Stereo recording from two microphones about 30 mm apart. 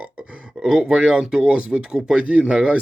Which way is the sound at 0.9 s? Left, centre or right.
Right.